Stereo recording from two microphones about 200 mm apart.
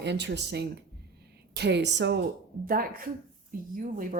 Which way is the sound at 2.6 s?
45° right (ahead or behind).